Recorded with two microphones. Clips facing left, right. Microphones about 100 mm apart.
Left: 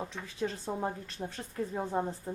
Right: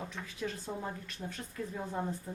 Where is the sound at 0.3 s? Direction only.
30° left (ahead or behind).